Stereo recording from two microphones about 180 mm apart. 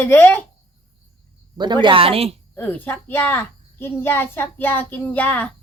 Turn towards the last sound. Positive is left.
turn(degrees=10)  # may be behind; listen again after turning